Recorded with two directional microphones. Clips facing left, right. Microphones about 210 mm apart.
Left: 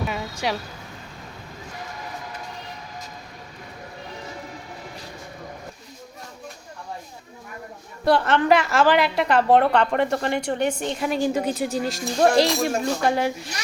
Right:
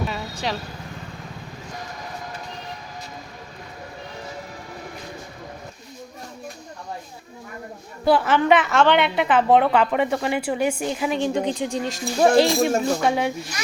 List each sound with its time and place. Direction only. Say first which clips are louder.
0.1 s vehicle: left 1 dB; 10° left (ahead or behind)
8.0 s a woman's voice: right 1 dB; 5° right (ahead or behind)